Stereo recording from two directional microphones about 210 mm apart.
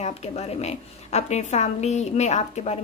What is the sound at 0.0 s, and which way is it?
A woman's voice, 30° left (ahead or behind).